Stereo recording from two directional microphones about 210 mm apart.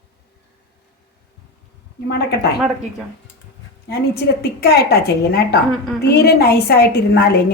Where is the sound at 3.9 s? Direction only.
50° left (ahead or behind).